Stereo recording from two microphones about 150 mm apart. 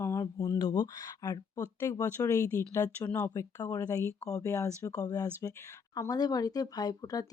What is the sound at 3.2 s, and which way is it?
Speech, 20° left (ahead or behind).